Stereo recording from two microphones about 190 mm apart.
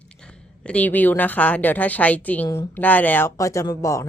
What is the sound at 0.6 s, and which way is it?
A woman's voice, 5° left (ahead or behind).